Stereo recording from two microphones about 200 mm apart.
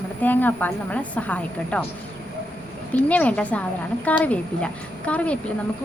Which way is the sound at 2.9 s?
10° left (ahead or behind).